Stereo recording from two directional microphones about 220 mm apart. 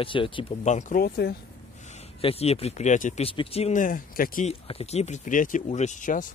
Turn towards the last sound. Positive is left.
turn(degrees=35)  # may be behind; listen again after turning